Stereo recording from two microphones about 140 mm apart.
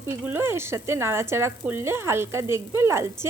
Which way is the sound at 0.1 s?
20° right (ahead or behind).